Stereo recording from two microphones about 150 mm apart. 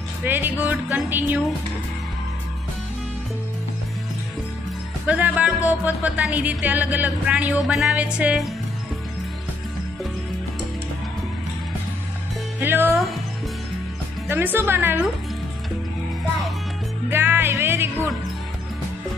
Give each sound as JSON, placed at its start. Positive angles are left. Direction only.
{"t": 0.2, "sound": "music", "side_deg": -10}
{"t": 5.0, "sound": "music", "side_deg": -10}
{"t": 12.5, "sound": "music", "side_deg": -15}
{"t": 14.2, "sound": "music", "side_deg": -15}
{"t": 17.1, "sound": "music", "side_deg": -15}